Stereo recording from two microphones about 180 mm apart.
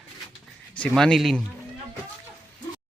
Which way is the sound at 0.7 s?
5° left (ahead or behind).